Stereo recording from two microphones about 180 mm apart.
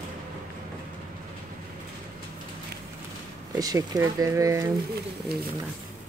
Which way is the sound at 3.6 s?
20° right (ahead or behind).